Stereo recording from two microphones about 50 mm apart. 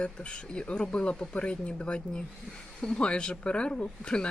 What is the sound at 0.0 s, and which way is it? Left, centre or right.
Speech, left.